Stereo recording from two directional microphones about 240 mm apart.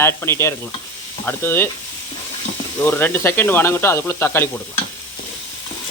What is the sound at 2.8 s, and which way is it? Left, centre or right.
Speech, centre.